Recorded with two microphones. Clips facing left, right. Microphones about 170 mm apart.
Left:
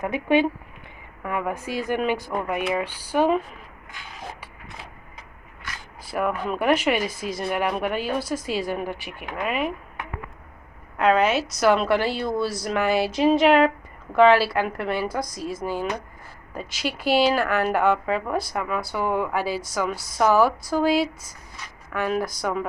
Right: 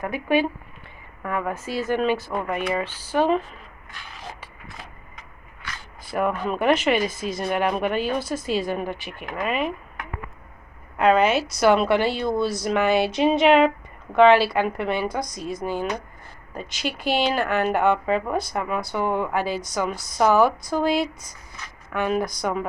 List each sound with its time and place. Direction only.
0.0 s speech: 20° left (ahead or behind)
6.1 s speech: 5° left (ahead or behind)
10.9 s speech: centre (ahead or behind)